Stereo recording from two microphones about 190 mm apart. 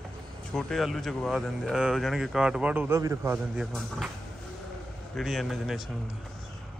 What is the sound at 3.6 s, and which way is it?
Speech, centre (ahead or behind).